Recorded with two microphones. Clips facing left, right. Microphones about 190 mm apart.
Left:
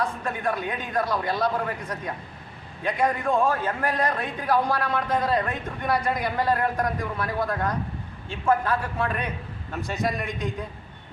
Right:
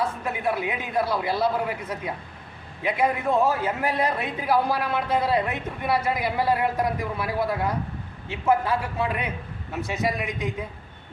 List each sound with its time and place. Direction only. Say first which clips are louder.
0.0 s a man's voice: right 1 dB; 5° right (ahead or behind)